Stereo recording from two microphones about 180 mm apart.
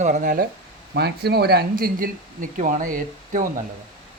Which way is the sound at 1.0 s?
65° right (ahead or behind).